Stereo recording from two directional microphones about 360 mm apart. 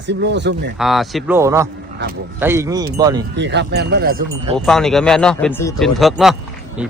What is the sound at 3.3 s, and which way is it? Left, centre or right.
Speech, right.